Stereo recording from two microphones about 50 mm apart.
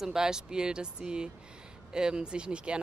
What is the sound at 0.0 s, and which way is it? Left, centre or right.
Speech, centre.